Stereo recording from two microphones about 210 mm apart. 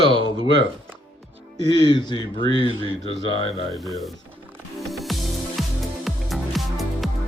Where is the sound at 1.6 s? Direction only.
20° left (ahead or behind).